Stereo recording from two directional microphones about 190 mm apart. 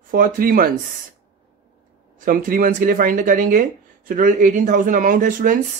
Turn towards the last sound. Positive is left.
turn(degrees=-45)  # may be behind; listen again after turning